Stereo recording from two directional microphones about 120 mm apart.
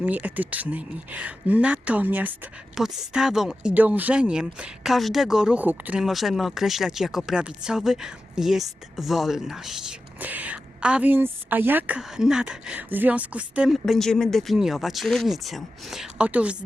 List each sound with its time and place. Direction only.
0.0 s speech: 15° right (ahead or behind)
13.8 s speech: centre (ahead or behind)